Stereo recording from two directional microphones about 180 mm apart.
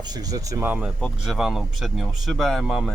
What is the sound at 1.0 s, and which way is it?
A man's voice, 5° left (ahead or behind).